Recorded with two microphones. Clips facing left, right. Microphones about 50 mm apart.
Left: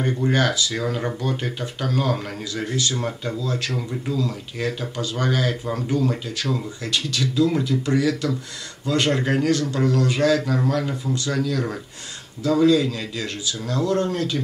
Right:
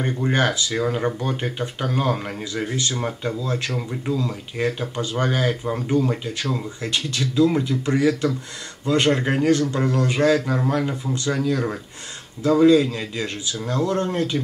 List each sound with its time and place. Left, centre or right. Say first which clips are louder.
0.0 s speech: even; right
2.9 s speech: right 1 dB; centre
3.7 s speech: right 1 dB; centre
9.5 s speech: right 1 dB; right